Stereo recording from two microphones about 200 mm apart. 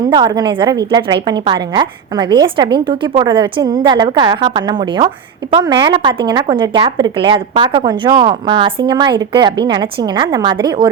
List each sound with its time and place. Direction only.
0.1 s a woman's voice: 20° right (ahead or behind)